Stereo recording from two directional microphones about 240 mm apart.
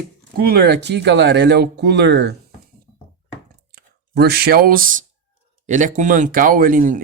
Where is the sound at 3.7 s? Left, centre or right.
Right.